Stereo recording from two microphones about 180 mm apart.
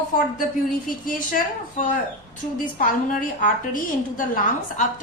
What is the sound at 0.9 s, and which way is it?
Speech, 50° left (ahead or behind).